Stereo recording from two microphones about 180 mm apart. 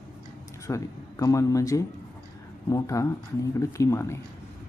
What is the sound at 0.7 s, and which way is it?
A man's voice, 15° left (ahead or behind).